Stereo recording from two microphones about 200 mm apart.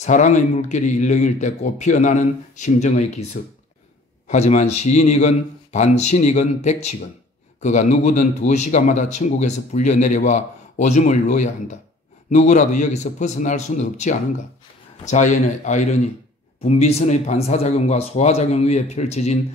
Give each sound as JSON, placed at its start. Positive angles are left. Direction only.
{"t": 0.0, "sound": "a man's voice", "side_deg": 35}